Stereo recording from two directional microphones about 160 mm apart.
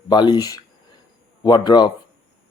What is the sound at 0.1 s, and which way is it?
Speech, 25° left (ahead or behind).